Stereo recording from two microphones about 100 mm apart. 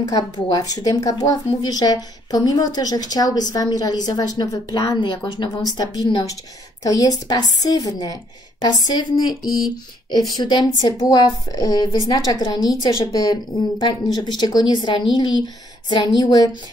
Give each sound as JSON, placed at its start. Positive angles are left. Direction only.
{"t": 0.0, "sound": "speech", "side_deg": 40}
{"t": 5.0, "sound": "speech", "side_deg": 50}
{"t": 10.3, "sound": "speech", "side_deg": 45}
{"t": 12.9, "sound": "speech", "side_deg": 35}